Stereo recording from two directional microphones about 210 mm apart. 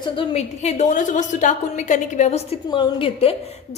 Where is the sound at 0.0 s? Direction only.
25° left (ahead or behind).